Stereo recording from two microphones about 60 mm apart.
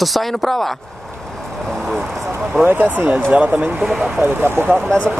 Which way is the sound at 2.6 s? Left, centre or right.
Right.